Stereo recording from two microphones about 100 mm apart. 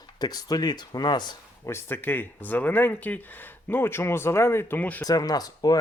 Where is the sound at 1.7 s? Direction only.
25° left (ahead or behind).